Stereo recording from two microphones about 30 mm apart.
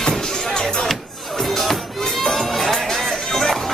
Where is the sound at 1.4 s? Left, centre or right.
Centre.